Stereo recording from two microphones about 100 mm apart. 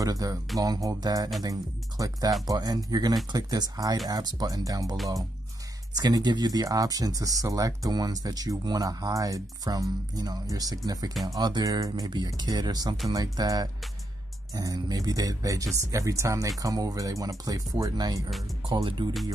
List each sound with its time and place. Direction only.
0.0 s speech: 40° right (ahead or behind)
5.9 s speech: 45° right (ahead or behind)
18.8 s speech: 60° right (ahead or behind)